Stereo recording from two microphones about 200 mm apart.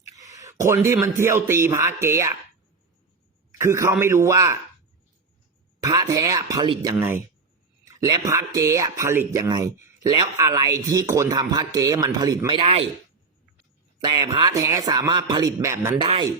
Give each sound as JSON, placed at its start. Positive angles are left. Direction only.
{"t": 0.3, "sound": "speech", "side_deg": -15}
{"t": 3.6, "sound": "speech", "side_deg": -15}
{"t": 5.8, "sound": "a man's voice", "side_deg": -15}
{"t": 14.0, "sound": "a man's voice", "side_deg": -20}
{"t": 16.0, "sound": "a man's voice", "side_deg": -25}